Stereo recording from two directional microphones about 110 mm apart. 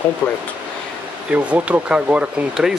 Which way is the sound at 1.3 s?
15° right (ahead or behind).